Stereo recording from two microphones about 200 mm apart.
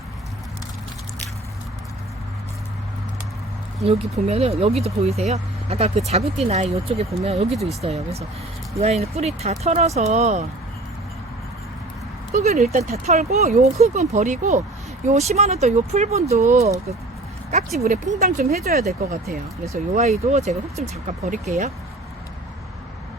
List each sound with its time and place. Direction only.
4.3 s speech: 30° right (ahead or behind)
7.5 s speech: centre (ahead or behind)
7.8 s speech: 35° right (ahead or behind)
12.3 s speech: 35° right (ahead or behind)
17.7 s speech: 35° right (ahead or behind)